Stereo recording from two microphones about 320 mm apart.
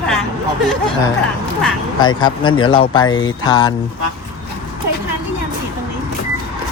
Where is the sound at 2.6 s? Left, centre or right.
Centre.